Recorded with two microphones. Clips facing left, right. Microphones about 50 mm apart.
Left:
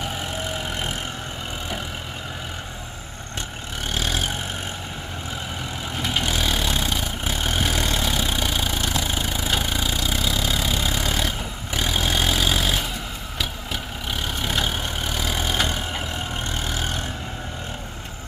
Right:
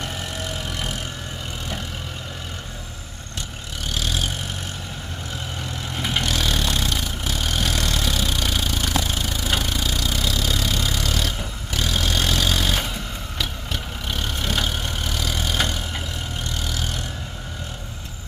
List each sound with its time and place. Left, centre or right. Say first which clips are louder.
0.0 s vehicle: left 2 dB; left
3.9 s vehicle: left 1 dB; left
6.0 s vehicle: even; centre
6.2 s vehicle: even; centre
14.1 s vehicle: even; centre
16.6 s vehicle: left 1 dB; left